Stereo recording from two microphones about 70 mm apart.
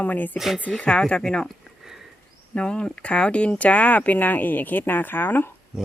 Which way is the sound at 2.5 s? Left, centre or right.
Centre.